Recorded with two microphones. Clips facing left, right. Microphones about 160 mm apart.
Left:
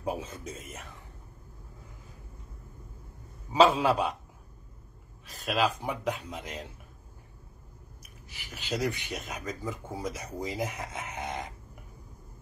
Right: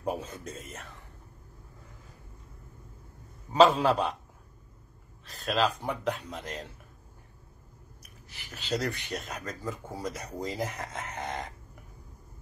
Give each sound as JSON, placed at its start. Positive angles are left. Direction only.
{"t": 0.0, "sound": "speech", "side_deg": 5}
{"t": 3.5, "sound": "speech", "side_deg": 5}
{"t": 5.2, "sound": "speech", "side_deg": 10}
{"t": 8.4, "sound": "speech", "side_deg": 10}